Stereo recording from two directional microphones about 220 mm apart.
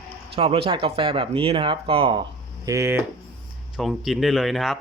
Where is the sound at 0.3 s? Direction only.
25° right (ahead or behind).